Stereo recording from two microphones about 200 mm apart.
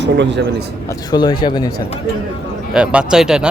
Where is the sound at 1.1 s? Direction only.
20° left (ahead or behind).